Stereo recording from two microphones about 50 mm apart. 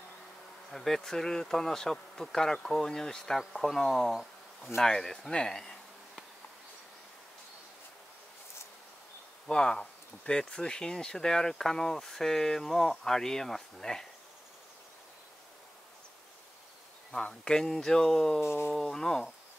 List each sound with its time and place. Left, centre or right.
0.7 s speech: centre
9.5 s speech: centre
17.1 s speech: centre
18.4 s a sound: left
18.7 s speech: centre